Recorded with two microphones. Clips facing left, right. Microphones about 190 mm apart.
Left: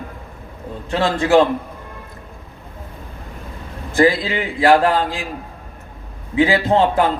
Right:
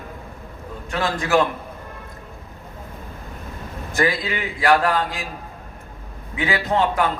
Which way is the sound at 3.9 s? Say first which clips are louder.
Left 7 dB; 30° left (ahead or behind).